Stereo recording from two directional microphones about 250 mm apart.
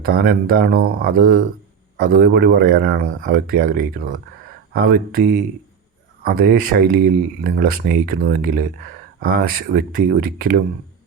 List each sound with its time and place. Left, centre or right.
0.0 s speech: right